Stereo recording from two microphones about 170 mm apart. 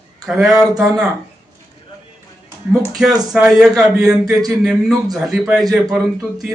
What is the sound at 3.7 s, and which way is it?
Speech, 20° right (ahead or behind).